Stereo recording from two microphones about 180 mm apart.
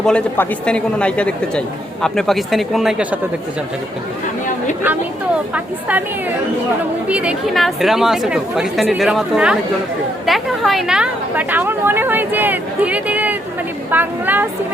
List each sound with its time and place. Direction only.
0.0 s speech: 5° left (ahead or behind)
7.1 s a woman's voice: 5° right (ahead or behind)